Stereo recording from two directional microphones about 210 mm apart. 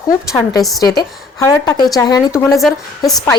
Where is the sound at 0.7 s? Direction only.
15° left (ahead or behind).